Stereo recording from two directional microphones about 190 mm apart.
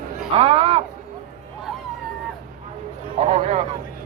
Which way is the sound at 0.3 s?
30° right (ahead or behind).